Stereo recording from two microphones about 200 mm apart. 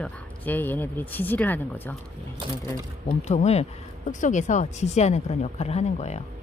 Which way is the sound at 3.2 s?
35° left (ahead or behind).